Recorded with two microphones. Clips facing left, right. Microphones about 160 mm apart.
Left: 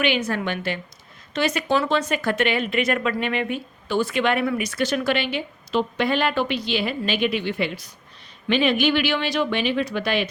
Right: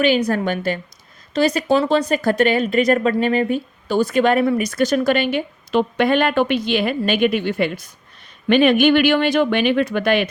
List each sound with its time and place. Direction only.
0.0 s speech: 40° right (ahead or behind); by 10.2 s 55° right (ahead or behind)